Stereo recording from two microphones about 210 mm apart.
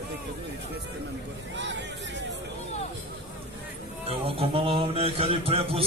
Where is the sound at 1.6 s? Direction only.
60° right (ahead or behind).